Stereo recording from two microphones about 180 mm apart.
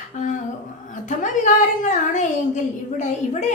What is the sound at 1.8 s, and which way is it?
Speech, 45° left (ahead or behind).